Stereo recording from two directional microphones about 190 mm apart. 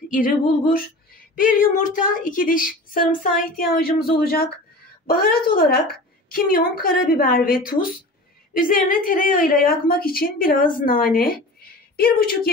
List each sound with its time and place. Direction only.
0.1 s a woman's voice: 45° left (ahead or behind)